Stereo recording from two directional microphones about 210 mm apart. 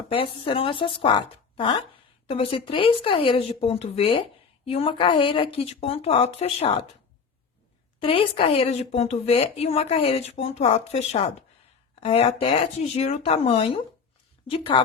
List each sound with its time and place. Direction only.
0.1 s a woman's voice: 25° left (ahead or behind)
8.0 s a woman's voice: 25° left (ahead or behind)